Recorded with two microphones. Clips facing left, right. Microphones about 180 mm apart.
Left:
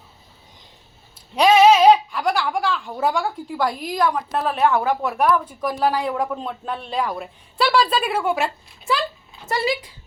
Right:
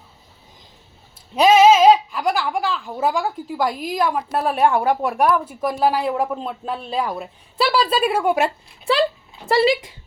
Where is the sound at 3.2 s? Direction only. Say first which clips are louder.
Right 1 dB; 20° right (ahead or behind).